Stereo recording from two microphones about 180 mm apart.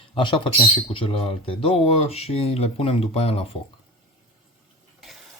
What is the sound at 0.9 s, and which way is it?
Speech, 30° left (ahead or behind).